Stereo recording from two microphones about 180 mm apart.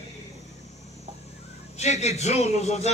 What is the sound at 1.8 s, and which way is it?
A man's voice, 40° left (ahead or behind).